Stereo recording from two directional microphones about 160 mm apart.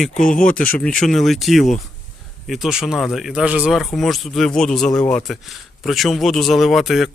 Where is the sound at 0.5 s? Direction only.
5° left (ahead or behind).